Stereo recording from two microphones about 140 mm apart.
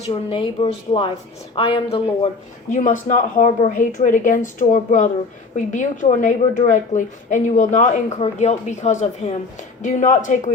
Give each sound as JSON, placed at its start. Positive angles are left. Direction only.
{"t": 0.0, "sound": "speech", "side_deg": 40}
{"t": 2.6, "sound": "speech", "side_deg": 65}